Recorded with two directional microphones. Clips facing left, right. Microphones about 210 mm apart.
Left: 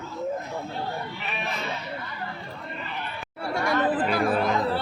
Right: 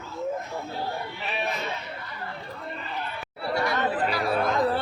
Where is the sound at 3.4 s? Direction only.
50° left (ahead or behind).